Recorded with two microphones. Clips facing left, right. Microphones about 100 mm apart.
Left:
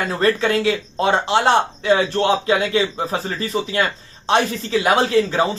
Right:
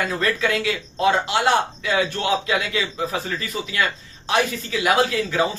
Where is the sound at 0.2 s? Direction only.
30° left (ahead or behind).